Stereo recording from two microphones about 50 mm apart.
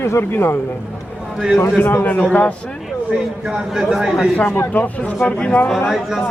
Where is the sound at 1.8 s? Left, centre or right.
Left.